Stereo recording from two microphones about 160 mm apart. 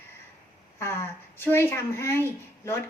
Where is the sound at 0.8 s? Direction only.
15° left (ahead or behind).